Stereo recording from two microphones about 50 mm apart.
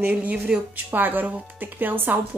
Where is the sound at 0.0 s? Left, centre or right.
Right.